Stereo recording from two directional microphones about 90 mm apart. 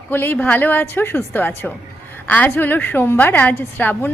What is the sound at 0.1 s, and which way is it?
A woman's voice, 25° left (ahead or behind).